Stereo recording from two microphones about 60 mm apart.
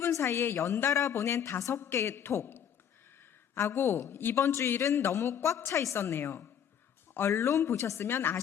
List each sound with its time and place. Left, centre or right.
0.0 s a woman's voice: left
1.7 s a woman's voice: left
4.8 s a woman's voice: left
6.0 s a woman's voice: left